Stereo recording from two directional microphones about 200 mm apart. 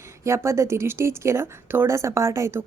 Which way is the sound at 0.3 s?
15° right (ahead or behind).